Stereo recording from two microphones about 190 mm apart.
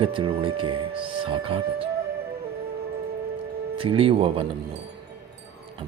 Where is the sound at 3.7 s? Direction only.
30° right (ahead or behind).